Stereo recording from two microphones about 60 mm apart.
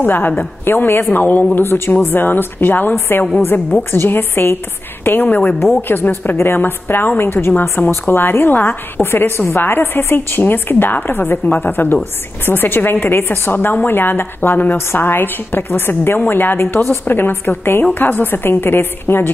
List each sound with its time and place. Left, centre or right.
0.0 s a woman's voice: left